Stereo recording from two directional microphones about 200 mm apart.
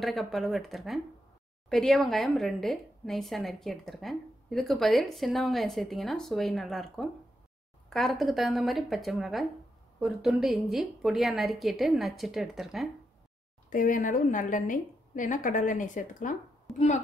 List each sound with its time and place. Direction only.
0.0 s a woman's voice: centre (ahead or behind)
13.7 s a woman's voice: 45° left (ahead or behind)